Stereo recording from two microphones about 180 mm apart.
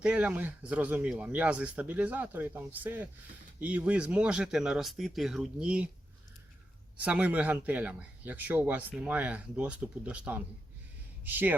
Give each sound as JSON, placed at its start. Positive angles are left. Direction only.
{"t": 0.0, "sound": "speech", "side_deg": -5}
{"t": 7.0, "sound": "speech", "side_deg": -5}